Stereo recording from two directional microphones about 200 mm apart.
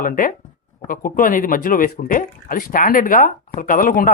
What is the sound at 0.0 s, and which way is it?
Speech, 45° left (ahead or behind).